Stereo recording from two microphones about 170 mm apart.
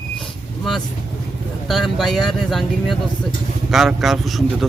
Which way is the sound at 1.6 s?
Centre (ahead or behind).